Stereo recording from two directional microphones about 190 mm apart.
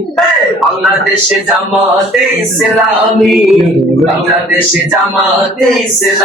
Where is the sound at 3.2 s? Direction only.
Centre (ahead or behind).